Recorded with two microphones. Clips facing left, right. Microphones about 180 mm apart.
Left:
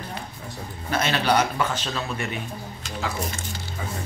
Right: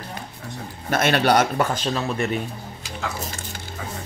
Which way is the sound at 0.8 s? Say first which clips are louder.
Right 4 dB; 55° right (ahead or behind).